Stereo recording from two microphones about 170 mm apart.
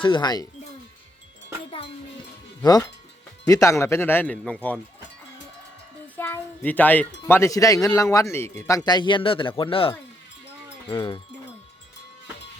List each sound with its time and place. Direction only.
0.0 s speech: 25° left (ahead or behind)
2.6 s speech: 20° left (ahead or behind); by 4.8 s 5° left (ahead or behind)
6.1 s speech: 10° left (ahead or behind); by 9.9 s 30° left (ahead or behind)
10.9 s speech: 25° left (ahead or behind)